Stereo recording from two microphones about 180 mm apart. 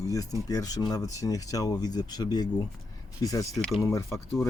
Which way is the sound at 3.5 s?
Centre (ahead or behind).